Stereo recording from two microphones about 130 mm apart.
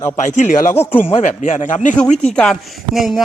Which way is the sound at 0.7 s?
15° left (ahead or behind).